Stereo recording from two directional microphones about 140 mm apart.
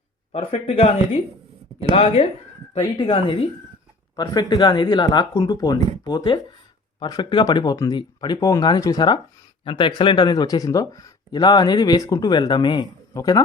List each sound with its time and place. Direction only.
0.3 s speech: 50° left (ahead or behind)
4.1 s speech: 25° left (ahead or behind)